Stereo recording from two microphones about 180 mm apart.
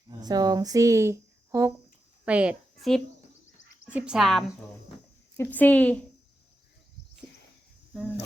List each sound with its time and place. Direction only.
0.2 s a child's voice: 20° right (ahead or behind); by 6.0 s 10° left (ahead or behind)